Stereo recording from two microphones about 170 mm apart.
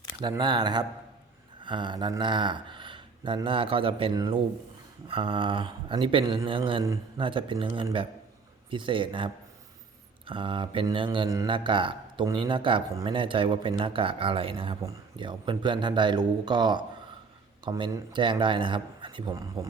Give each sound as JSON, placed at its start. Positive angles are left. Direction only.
{"t": 0.2, "sound": "speech", "side_deg": -25}